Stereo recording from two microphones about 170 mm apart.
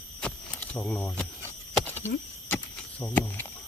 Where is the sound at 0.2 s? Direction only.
5° left (ahead or behind).